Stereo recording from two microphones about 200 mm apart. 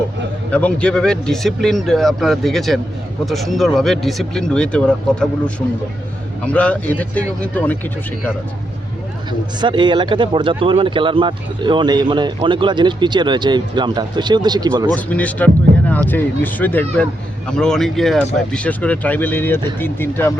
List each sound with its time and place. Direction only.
0.5 s speech: 5° left (ahead or behind)
9.6 s speech: 25° right (ahead or behind)
14.9 s speech: 5° left (ahead or behind)